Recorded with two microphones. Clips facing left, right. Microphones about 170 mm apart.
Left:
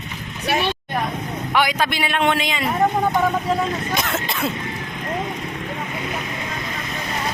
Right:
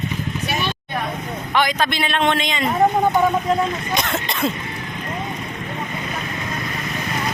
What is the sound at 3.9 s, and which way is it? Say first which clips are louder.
Throat clearing: right 1 dB; 5° left (ahead or behind).